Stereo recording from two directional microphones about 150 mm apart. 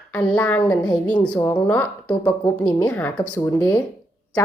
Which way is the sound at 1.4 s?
20° left (ahead or behind).